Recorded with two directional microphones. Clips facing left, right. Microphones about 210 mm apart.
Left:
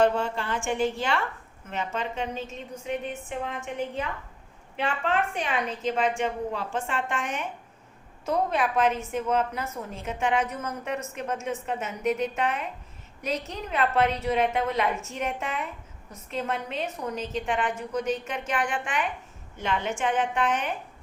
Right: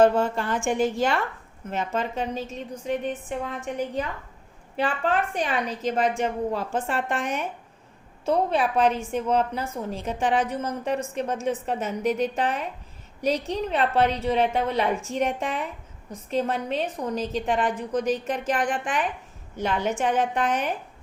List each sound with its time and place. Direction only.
0.0 s a woman's voice: 45° right (ahead or behind)